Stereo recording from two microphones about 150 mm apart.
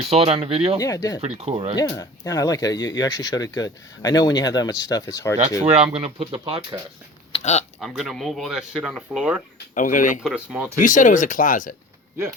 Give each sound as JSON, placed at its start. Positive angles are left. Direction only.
{"t": 0.1, "sound": "speech", "side_deg": -40}
{"t": 0.8, "sound": "speech", "side_deg": 25}
{"t": 1.2, "sound": "speech", "side_deg": -45}
{"t": 1.8, "sound": "speech", "side_deg": 25}
{"t": 5.7, "sound": "speech", "side_deg": -40}
{"t": 7.3, "sound": "speech", "side_deg": 50}
{"t": 7.8, "sound": "speech", "side_deg": 0}
{"t": 9.7, "sound": "speech", "side_deg": 60}
{"t": 10.2, "sound": "speech", "side_deg": -5}
{"t": 10.8, "sound": "speech", "side_deg": 60}